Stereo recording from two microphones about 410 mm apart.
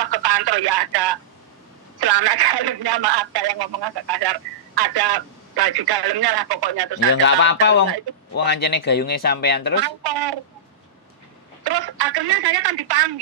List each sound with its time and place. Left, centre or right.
0.0 s speech: right
7.1 s speech: left
9.8 s speech: right
11.6 s speech: right